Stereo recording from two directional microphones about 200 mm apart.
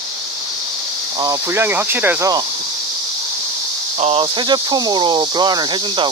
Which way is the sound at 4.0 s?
30° right (ahead or behind).